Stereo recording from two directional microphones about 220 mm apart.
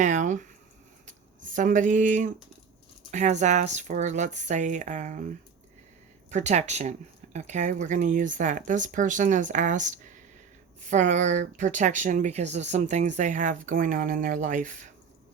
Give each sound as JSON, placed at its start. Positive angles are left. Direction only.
{"t": 0.0, "sound": "speech", "side_deg": -35}
{"t": 1.5, "sound": "speech", "side_deg": -35}
{"t": 6.3, "sound": "speech", "side_deg": -30}